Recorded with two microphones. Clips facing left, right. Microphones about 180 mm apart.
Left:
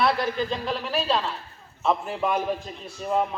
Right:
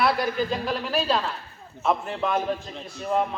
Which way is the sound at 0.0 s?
5° right (ahead or behind).